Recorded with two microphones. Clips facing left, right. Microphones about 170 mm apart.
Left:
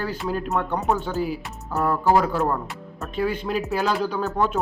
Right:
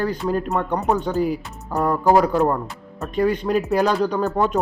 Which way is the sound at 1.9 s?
15° right (ahead or behind).